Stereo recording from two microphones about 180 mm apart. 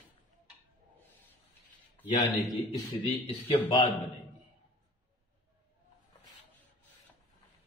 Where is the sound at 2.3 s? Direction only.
20° left (ahead or behind).